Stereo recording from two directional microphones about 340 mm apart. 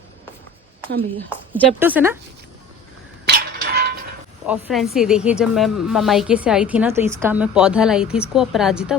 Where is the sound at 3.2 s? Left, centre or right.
Right.